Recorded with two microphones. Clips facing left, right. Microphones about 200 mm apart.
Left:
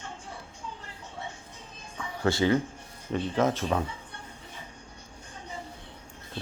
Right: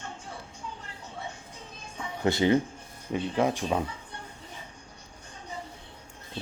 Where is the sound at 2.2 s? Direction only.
20° right (ahead or behind).